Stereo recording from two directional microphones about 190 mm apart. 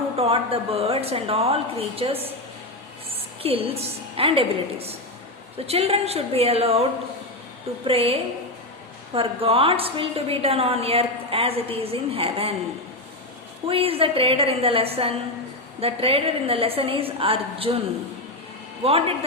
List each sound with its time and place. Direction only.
0.2 s a woman's voice: 30° right (ahead or behind)
7.9 s a woman's voice: 30° right (ahead or behind)
13.7 s a woman's voice: 30° right (ahead or behind)
18.8 s a woman's voice: 30° right (ahead or behind)